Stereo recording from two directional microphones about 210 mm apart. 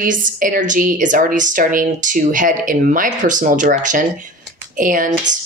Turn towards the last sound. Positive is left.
turn(degrees=-40)  # may be behind; listen again after turning